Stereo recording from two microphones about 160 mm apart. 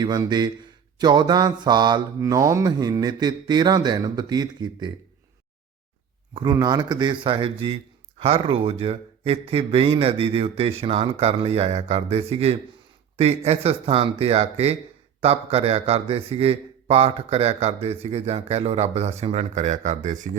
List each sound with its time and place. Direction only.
0.0 s mantra: 25° right (ahead or behind)
6.3 s mantra: 25° right (ahead or behind)
8.2 s a man's voice: 35° right (ahead or behind)